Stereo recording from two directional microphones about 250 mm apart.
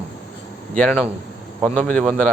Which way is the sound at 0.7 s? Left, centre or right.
Centre.